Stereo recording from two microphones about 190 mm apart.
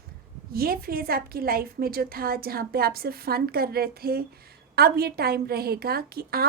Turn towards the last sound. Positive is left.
turn(degrees=-55)  # may be behind; listen again after turning